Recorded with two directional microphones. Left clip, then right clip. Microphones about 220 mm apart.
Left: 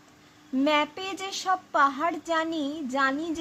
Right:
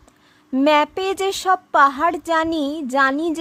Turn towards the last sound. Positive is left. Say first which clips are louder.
# right 8 dB
turn(degrees=-50)  # may be behind; listen again after turning